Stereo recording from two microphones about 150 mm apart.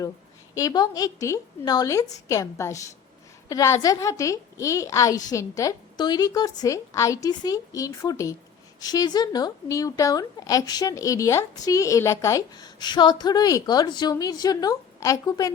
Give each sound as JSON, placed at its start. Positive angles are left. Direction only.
{"t": 0.5, "sound": "a woman's voice", "side_deg": 25}